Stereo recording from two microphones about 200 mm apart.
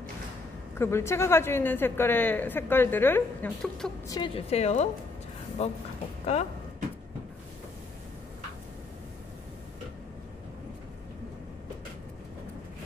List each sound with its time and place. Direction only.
0.7 s a woman's voice: 15° left (ahead or behind)
4.1 s a woman's voice: 25° left (ahead or behind)